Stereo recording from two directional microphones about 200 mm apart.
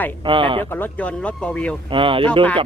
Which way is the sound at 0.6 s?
10° left (ahead or behind).